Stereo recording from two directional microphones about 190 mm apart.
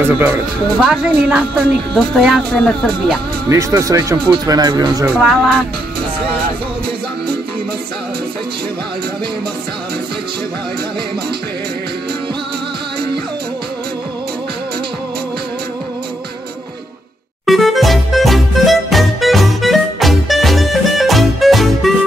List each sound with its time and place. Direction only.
0.0 s speech: 10° right (ahead or behind)
3.4 s speech: 15° right (ahead or behind)
5.1 s speech: centre (ahead or behind)
17.5 s music: centre (ahead or behind)